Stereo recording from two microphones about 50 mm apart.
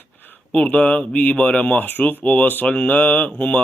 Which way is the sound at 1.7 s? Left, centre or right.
Left.